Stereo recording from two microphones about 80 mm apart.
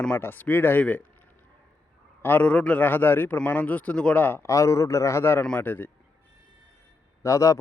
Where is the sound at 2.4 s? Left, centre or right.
Centre.